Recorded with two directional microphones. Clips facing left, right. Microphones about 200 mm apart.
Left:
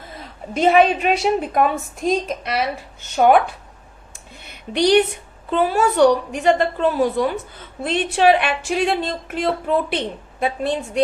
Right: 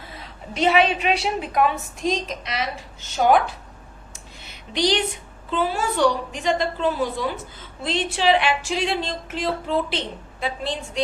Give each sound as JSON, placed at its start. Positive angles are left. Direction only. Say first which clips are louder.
{"t": 0.5, "sound": "a woman's voice", "louder": "left 4 dB", "side_deg": 50}
{"t": 4.1, "sound": "a sound", "louder": "left 5 dB", "side_deg": 55}
{"t": 5.5, "sound": "a woman's voice", "louder": "left 6 dB", "side_deg": 55}